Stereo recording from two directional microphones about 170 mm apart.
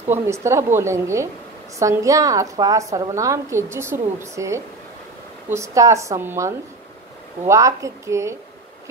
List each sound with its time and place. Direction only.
0.1 s a woman's voice: 15° right (ahead or behind)